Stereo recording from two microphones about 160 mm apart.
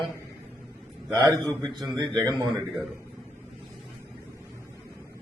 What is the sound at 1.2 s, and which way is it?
Speech, 20° right (ahead or behind).